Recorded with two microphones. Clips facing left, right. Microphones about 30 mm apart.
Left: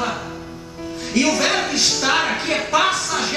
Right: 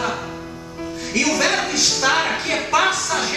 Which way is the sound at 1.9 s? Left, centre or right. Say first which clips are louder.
Right 1 dB; centre.